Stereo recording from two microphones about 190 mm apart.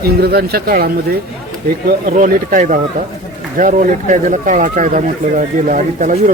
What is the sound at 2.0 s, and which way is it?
Speech, 45° right (ahead or behind).